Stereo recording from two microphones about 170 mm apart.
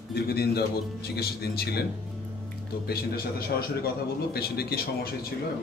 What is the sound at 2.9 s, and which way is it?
A man's voice, 65° left (ahead or behind).